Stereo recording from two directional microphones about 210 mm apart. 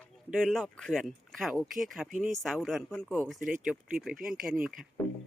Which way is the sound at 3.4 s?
40° right (ahead or behind).